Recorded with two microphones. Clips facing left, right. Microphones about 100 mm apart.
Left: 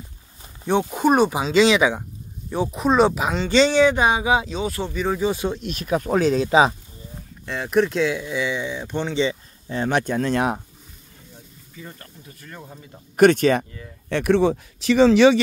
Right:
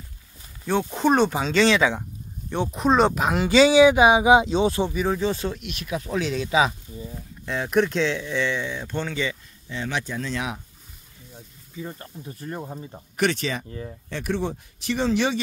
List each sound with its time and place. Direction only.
0.7 s speech: 15° left (ahead or behind); by 4.8 s 25° right (ahead or behind)
5.0 s speech: centre (ahead or behind)
5.3 s speech: 15° left (ahead or behind)
5.6 s speech: 40° left (ahead or behind)
7.4 s speech: centre (ahead or behind); by 9.4 s 25° left (ahead or behind)
9.7 s speech: 50° left (ahead or behind)
11.7 s speech: 15° right (ahead or behind)
12.3 s speech: 30° right (ahead or behind)
13.1 s speech: 50° left (ahead or behind)
13.7 s speech: 35° right (ahead or behind)
14.0 s speech: 70° left (ahead or behind); by 15.4 s 90° left